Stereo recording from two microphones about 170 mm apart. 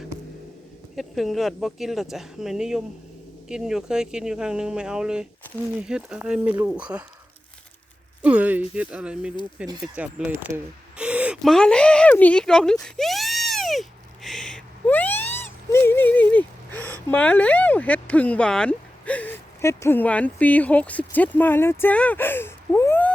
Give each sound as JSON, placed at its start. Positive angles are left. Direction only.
{"t": 0.9, "sound": "speech", "side_deg": 0}
{"t": 8.2, "sound": "speech", "side_deg": -10}
{"t": 10.9, "sound": "a sound", "side_deg": -5}
{"t": 11.5, "sound": "speech", "side_deg": 5}
{"t": 12.8, "sound": "a sound", "side_deg": 0}
{"t": 17.1, "sound": "speech", "side_deg": 10}